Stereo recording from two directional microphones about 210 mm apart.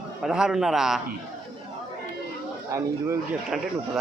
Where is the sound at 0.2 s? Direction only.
Centre (ahead or behind).